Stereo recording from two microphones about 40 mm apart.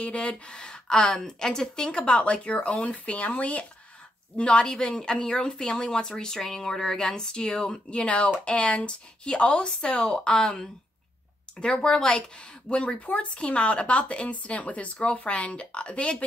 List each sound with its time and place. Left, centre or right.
0.0 s speech: left; by 10.7 s centre
11.6 s speech: left